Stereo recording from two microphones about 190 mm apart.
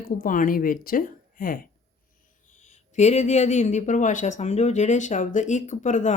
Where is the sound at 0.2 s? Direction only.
45° left (ahead or behind).